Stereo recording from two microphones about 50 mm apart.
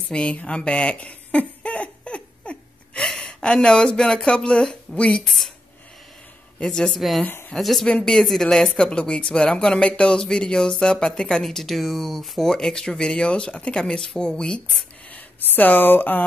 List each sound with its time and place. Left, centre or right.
0.1 s a sound: left
3.1 s speech: centre
6.6 s speech: centre
7.5 s speech: centre
7.8 s speech: centre
15.1 s speech: left